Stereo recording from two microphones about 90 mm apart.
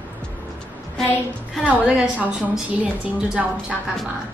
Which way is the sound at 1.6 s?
15° right (ahead or behind).